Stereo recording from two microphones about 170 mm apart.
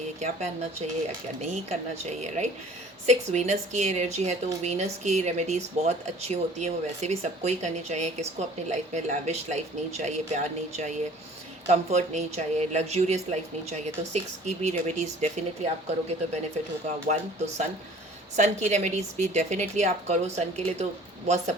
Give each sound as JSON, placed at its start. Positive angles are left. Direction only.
{"t": 0.2, "sound": "a woman's voice", "side_deg": -40}